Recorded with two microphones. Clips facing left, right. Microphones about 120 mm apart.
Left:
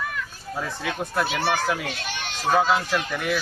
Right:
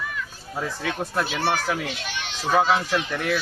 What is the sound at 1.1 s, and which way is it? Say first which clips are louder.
Speech: left 1 dB; 20° right (ahead or behind).